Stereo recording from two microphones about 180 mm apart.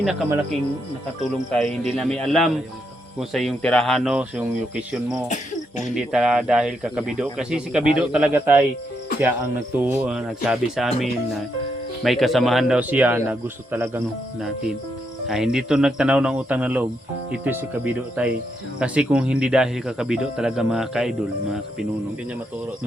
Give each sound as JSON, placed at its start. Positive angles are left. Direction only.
{"t": 1.5, "sound": "speech", "side_deg": 5}
{"t": 5.3, "sound": "insect", "side_deg": 40}
{"t": 5.9, "sound": "speech", "side_deg": -5}
{"t": 9.7, "sound": "speech", "side_deg": -10}
{"t": 15.3, "sound": "speech", "side_deg": 0}